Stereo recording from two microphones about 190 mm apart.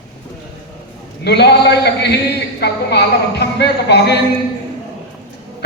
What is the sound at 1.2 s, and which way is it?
A woman's voice, 60° left (ahead or behind).